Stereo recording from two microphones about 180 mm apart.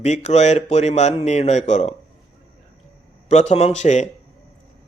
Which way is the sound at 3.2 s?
40° left (ahead or behind).